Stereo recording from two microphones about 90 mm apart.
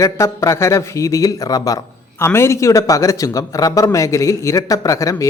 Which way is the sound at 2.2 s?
30° left (ahead or behind).